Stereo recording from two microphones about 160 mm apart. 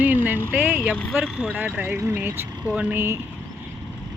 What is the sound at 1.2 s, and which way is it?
Speech, 10° right (ahead or behind).